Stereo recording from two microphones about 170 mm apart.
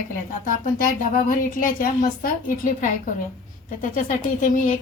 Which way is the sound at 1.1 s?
55° left (ahead or behind).